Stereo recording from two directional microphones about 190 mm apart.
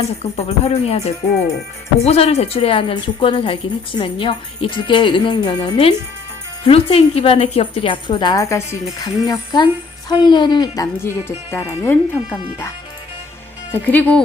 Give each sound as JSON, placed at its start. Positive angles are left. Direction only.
{"t": 0.2, "sound": "a woman's voice", "side_deg": 35}